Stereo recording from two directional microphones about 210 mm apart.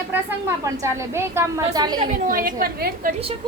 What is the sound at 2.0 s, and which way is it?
A woman's voice, 40° right (ahead or behind).